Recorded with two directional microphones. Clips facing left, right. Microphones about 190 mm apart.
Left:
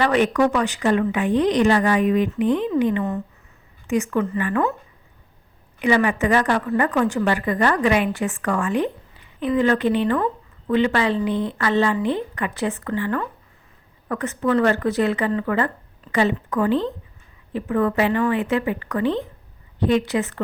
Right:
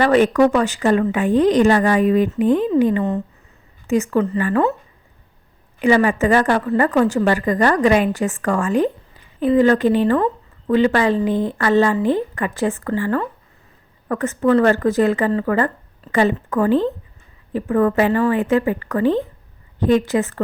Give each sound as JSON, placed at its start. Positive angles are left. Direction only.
{"t": 0.0, "sound": "speech", "side_deg": -40}
{"t": 5.8, "sound": "speech", "side_deg": -40}